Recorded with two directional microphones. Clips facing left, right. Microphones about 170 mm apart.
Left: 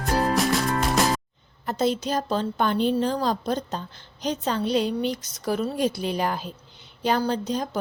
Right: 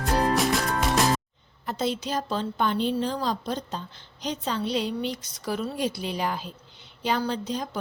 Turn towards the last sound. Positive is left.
turn(degrees=45)  # may be behind; listen again after turning